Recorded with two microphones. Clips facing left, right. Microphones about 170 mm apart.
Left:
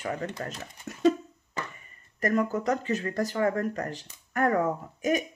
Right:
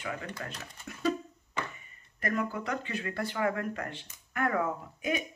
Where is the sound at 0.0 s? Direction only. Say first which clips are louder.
Left 6 dB; 40° left (ahead or behind).